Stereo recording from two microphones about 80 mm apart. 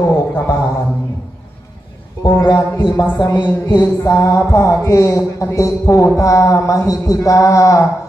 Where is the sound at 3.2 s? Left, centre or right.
Left.